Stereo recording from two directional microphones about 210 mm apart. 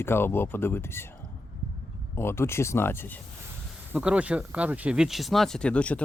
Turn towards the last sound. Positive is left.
turn(degrees=5)  # may be behind; listen again after turning